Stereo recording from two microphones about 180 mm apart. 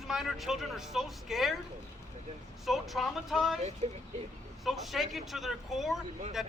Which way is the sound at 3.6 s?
35° right (ahead or behind).